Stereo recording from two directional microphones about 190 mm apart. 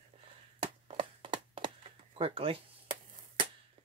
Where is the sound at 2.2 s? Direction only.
30° right (ahead or behind).